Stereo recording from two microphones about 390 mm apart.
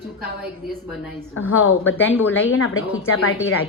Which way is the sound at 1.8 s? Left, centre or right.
Centre.